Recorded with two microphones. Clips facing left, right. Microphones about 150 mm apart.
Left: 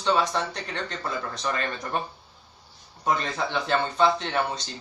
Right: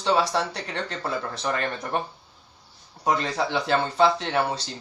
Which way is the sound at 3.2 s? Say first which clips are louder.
Right 3 dB; 30° right (ahead or behind).